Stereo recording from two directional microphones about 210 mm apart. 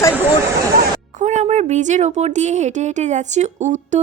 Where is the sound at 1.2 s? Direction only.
35° right (ahead or behind).